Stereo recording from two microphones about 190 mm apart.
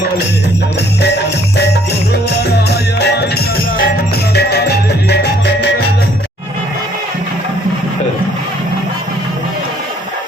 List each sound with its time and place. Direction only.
1.5 s jingle bell: 60° left (ahead or behind)
2.6 s music: 60° left (ahead or behind)